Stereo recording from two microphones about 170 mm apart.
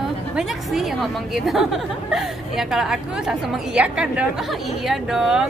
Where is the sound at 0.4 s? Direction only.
Centre (ahead or behind).